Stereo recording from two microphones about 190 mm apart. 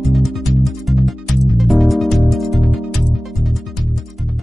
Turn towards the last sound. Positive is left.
turn(degrees=0)  # may be behind; listen again after turning